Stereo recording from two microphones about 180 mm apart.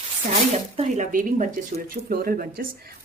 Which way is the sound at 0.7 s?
40° right (ahead or behind).